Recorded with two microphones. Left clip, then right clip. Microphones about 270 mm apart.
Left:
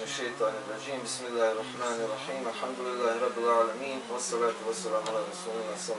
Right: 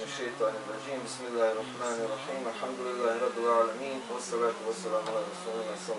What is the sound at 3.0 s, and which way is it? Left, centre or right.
Speech, centre.